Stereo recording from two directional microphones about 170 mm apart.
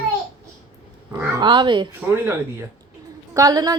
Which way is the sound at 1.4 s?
25° right (ahead or behind).